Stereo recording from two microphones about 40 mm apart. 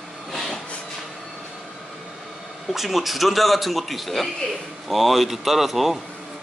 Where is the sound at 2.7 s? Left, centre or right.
Centre.